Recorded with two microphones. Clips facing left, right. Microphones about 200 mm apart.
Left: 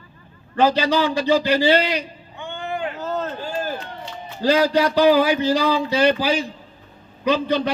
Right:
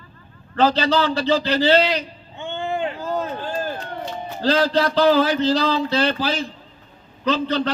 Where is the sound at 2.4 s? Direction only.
25° right (ahead or behind).